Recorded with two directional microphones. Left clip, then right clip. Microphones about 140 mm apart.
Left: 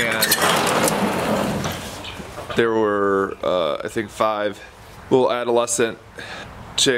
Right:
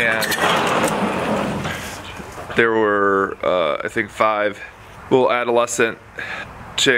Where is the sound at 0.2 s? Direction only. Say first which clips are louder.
Even; 20° left (ahead or behind).